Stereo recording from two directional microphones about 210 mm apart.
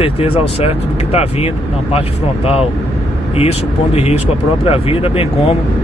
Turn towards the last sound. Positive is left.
turn(degrees=25)  # may be behind; listen again after turning